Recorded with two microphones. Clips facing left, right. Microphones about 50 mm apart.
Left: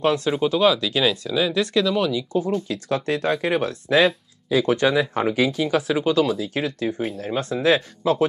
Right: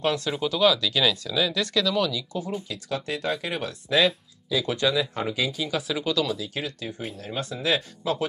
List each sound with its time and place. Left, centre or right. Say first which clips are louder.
0.0 s speech: left 5 dB; left
2.7 s speech: left 7 dB; left